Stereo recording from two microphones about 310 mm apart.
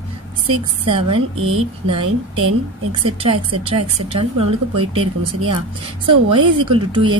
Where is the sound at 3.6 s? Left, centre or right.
Centre.